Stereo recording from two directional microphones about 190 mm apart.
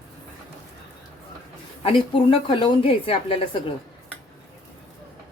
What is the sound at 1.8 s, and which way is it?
A woman's voice, 30° left (ahead or behind).